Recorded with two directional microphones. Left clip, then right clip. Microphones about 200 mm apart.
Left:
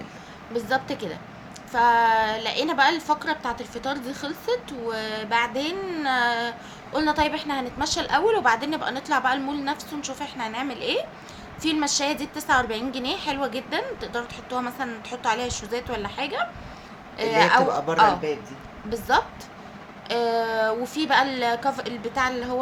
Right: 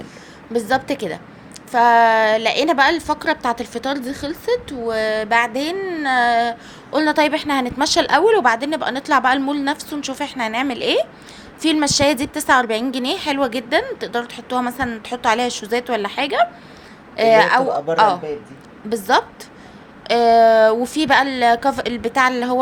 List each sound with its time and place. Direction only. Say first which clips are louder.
0.5 s a woman's voice: right 6 dB; 40° right (ahead or behind)
17.6 s speech: right 3 dB; 15° right (ahead or behind)
17.9 s a woman's voice: right 4 dB; 40° right (ahead or behind)